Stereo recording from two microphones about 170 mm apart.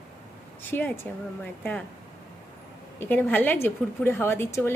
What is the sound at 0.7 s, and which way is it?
Speech, 10° left (ahead or behind).